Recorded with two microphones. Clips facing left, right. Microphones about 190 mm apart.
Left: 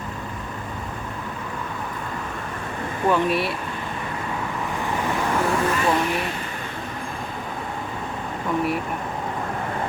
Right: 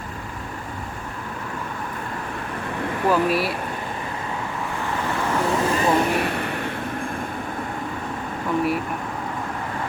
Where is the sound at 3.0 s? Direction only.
5° right (ahead or behind).